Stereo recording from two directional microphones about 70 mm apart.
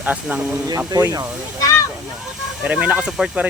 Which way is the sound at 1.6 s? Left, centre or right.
Left.